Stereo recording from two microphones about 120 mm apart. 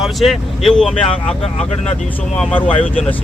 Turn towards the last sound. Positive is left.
turn(degrees=10)  # may be behind; listen again after turning